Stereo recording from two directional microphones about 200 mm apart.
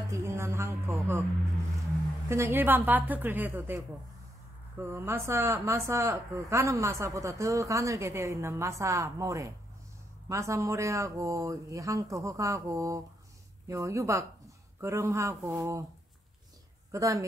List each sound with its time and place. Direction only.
0.1 s speech: 15° right (ahead or behind)
2.2 s speech: 15° right (ahead or behind)
16.9 s speech: 15° right (ahead or behind)